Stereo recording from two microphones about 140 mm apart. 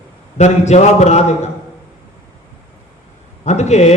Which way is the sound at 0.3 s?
55° left (ahead or behind).